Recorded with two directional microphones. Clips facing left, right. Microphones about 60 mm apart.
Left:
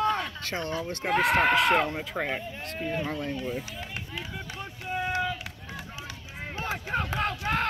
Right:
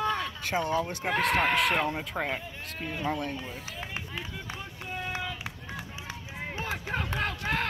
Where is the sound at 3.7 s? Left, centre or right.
Centre.